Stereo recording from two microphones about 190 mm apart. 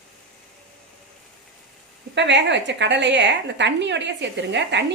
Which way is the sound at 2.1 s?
65° right (ahead or behind).